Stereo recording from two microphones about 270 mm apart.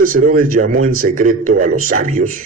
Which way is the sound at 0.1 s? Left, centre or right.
Right.